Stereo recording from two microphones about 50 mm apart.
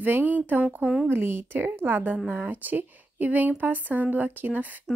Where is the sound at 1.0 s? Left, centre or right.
Right.